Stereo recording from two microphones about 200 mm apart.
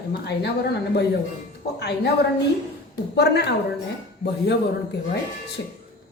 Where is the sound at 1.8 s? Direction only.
55° left (ahead or behind).